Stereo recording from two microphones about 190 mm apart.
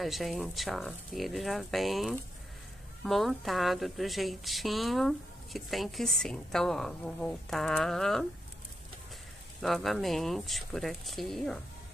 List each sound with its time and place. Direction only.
0.0 s a woman's voice: centre (ahead or behind)
9.6 s a woman's voice: centre (ahead or behind)